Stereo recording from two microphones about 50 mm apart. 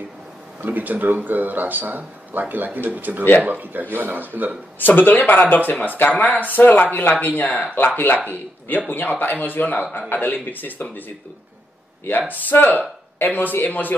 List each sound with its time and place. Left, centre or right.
0.6 s speech: right
4.7 s speech: left
12.2 s speech: left